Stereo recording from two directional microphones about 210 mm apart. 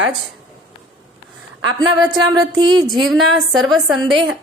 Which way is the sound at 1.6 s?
20° right (ahead or behind).